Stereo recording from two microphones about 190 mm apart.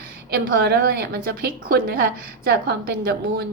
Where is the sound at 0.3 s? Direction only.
55° right (ahead or behind).